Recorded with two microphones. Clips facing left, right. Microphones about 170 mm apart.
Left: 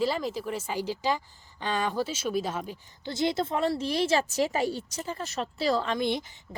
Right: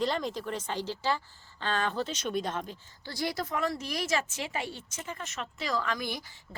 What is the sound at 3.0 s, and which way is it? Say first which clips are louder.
A woman's voice: left 6 dB; 20° left (ahead or behind).